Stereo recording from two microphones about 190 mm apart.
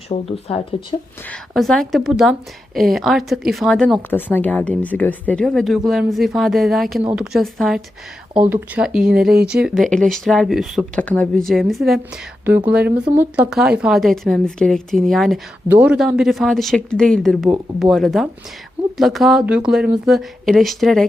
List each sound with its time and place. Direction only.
0.1 s speech: 30° left (ahead or behind)
1.3 s speech: centre (ahead or behind)